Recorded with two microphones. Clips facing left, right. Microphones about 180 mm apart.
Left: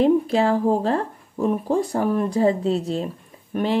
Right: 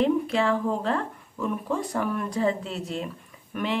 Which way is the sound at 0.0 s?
35° left (ahead or behind).